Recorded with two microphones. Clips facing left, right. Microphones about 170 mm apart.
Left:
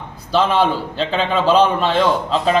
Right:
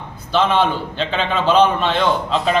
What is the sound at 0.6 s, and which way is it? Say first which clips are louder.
Speech: left 1 dB; 35° left (ahead or behind).